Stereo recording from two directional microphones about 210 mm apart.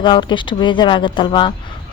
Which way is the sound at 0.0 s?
20° left (ahead or behind).